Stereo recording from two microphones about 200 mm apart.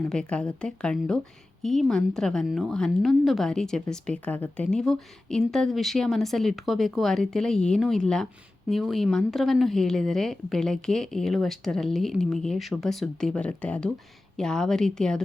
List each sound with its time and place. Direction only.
0.1 s a woman's voice: 5° left (ahead or behind)